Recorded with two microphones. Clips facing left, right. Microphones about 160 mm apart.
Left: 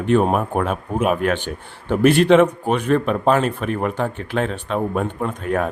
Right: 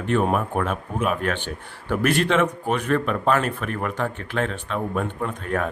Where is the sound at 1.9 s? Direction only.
30° left (ahead or behind).